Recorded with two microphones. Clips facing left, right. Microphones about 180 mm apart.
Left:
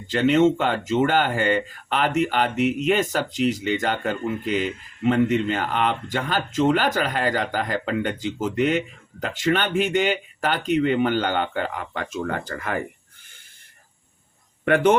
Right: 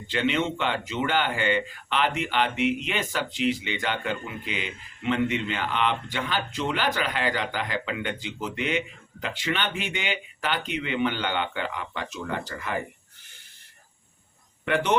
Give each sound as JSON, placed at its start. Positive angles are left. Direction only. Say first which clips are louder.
{"t": 0.1, "sound": "speech", "louder": "left 8 dB", "side_deg": 45}
{"t": 14.6, "sound": "a man's voice", "louder": "left 7 dB", "side_deg": 50}